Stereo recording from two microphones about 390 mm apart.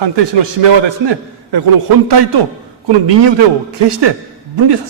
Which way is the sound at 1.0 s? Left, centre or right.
Right.